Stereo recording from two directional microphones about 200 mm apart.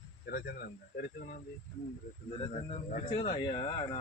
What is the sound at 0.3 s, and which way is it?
Speech, 50° left (ahead or behind).